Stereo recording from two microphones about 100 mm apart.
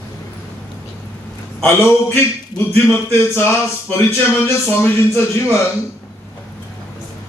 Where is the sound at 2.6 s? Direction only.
25° left (ahead or behind).